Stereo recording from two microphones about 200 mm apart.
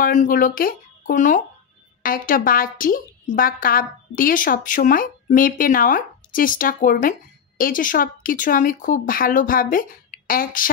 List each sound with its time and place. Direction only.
0.0 s a woman's voice: 40° left (ahead or behind)